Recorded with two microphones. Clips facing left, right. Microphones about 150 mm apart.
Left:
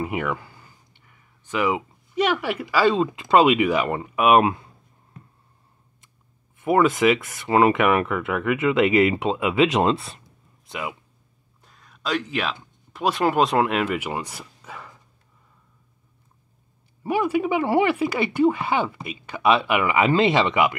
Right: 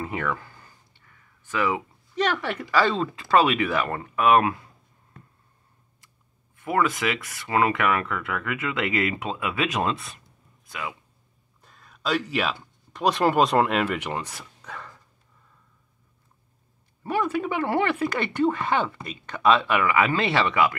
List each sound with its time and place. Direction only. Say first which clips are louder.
0.0 s speech: left 3 dB; 15° left (ahead or behind)
6.6 s speech: left 6 dB; 20° left (ahead or behind)
10.7 s speech: left 3 dB; 20° left (ahead or behind)
11.6 s a sound: right 1 dB; centre (ahead or behind)
12.9 s speech: even; centre (ahead or behind)
17.0 s speech: left 4 dB; 10° left (ahead or behind)